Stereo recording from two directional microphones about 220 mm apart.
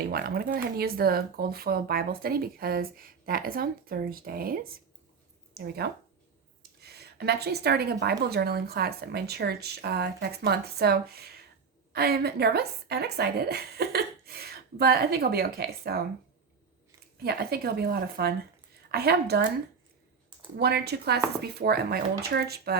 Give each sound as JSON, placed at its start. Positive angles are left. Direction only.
{"t": 0.0, "sound": "a woman's voice", "side_deg": -45}
{"t": 17.2, "sound": "speech", "side_deg": -45}
{"t": 20.6, "sound": "speech", "side_deg": -45}